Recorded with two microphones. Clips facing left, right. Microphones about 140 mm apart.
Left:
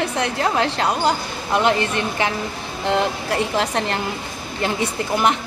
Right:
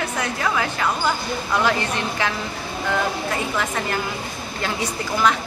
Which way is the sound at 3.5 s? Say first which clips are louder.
Left 3 dB; 30° left (ahead or behind).